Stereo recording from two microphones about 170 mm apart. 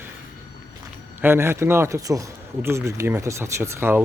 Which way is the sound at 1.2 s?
15° right (ahead or behind).